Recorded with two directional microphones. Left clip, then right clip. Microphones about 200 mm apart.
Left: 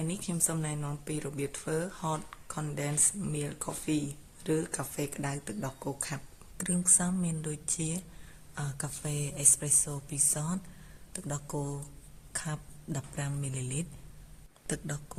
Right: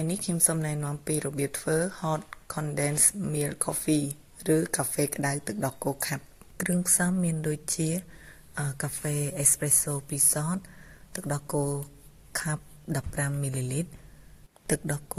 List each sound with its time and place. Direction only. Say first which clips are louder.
0.1 s speech: right 5 dB; 25° right (ahead or behind)